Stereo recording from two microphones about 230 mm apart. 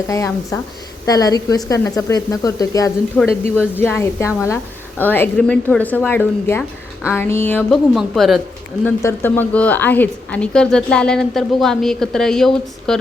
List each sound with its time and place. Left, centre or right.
0.1 s a woman's voice: centre
8.8 s a woman's voice: centre